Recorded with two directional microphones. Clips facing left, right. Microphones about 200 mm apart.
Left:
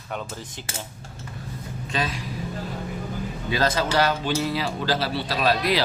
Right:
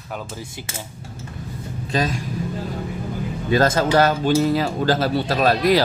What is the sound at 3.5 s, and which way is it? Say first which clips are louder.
Speech: right 6 dB; 45° right (ahead or behind).